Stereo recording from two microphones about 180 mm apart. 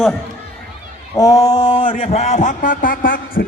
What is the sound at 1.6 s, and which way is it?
A man's voice, 35° left (ahead or behind).